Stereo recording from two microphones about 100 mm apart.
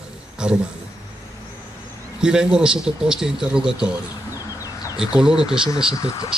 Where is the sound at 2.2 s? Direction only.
10° right (ahead or behind).